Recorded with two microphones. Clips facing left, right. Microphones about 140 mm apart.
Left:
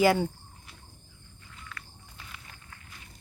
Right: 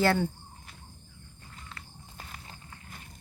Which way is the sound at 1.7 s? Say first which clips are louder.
Left 2 dB; 30° right (ahead or behind).